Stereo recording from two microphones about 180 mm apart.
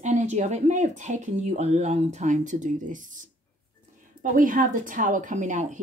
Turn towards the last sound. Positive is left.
turn(degrees=-40)  # may be behind; listen again after turning